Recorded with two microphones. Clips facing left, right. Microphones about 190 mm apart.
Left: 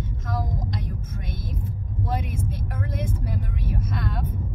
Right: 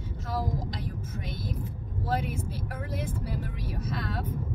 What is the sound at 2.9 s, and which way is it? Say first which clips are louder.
Speech: left 2 dB; 45° left (ahead or behind).